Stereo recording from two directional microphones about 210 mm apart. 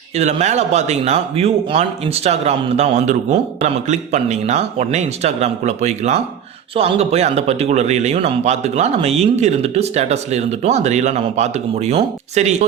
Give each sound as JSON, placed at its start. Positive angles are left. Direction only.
{"t": 0.2, "sound": "a man's voice", "side_deg": -30}